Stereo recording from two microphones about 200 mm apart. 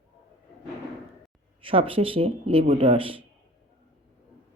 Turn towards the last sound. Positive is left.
turn(degrees=-25)  # may be behind; listen again after turning